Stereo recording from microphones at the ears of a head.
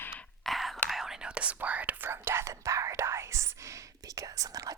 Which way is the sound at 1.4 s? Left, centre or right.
Right.